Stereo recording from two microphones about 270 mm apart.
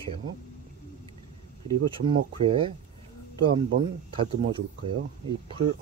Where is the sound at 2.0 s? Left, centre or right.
Centre.